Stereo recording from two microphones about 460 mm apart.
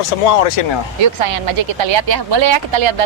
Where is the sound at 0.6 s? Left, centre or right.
Left.